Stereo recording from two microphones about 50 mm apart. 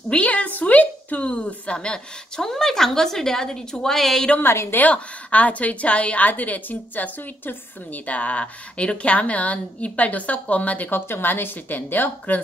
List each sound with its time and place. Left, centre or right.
0.1 s a woman's voice: left; by 4.3 s centre
4.6 s a woman's voice: left
10.9 s a woman's voice: left